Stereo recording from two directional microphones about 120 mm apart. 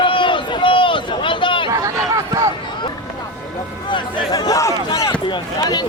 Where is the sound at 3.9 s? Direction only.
40° left (ahead or behind).